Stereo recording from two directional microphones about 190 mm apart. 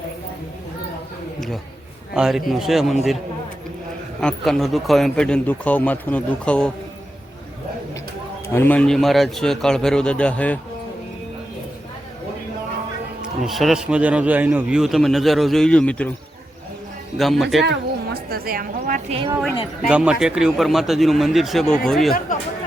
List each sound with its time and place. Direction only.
2.1 s a man's voice: centre (ahead or behind)
4.2 s a man's voice: 5° left (ahead or behind)
8.5 s a man's voice: 10° left (ahead or behind)
13.2 s a man's voice: centre (ahead or behind)
17.2 s a man's voice: centre (ahead or behind)
17.7 s a woman's voice: 55° right (ahead or behind)
19.9 s a man's voice: 5° right (ahead or behind)